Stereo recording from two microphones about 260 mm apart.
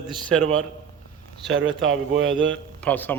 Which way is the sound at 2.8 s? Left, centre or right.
Centre.